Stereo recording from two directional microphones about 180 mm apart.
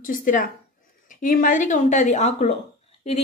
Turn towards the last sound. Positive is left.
turn(degrees=35)  # may be behind; listen again after turning